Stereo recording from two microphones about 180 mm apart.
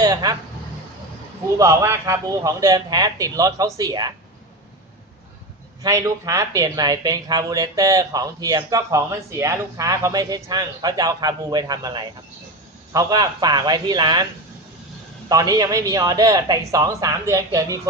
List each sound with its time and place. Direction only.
0.0 s speech: 20° right (ahead or behind)
1.5 s speech: 15° right (ahead or behind)
5.8 s speech: 20° right (ahead or behind)
15.3 s speech: 20° right (ahead or behind)